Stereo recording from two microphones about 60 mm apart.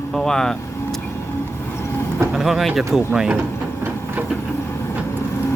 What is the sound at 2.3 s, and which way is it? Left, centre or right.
Speech, centre.